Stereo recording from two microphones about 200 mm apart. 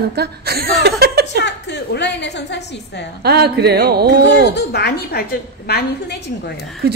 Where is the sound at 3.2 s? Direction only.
55° right (ahead or behind).